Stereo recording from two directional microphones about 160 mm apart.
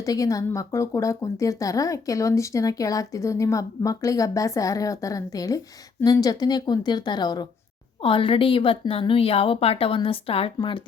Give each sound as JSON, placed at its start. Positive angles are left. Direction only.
{"t": 0.0, "sound": "speech", "side_deg": 20}